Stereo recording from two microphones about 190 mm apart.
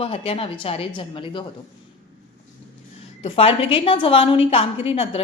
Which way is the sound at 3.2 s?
30° left (ahead or behind).